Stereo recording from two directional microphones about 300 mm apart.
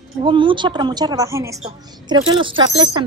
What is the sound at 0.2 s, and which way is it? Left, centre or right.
A woman's voice, centre.